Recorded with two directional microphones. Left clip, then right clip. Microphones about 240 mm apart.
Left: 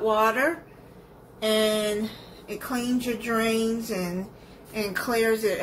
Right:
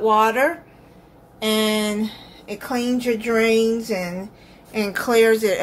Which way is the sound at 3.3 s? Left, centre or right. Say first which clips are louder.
Right 8 dB; right.